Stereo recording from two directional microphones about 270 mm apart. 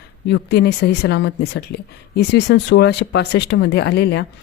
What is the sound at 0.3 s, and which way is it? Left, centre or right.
A woman's voice, left.